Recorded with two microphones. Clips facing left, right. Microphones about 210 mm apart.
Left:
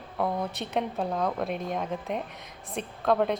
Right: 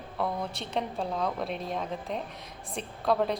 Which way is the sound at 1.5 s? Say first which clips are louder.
Left 3 dB; 30° right (ahead or behind).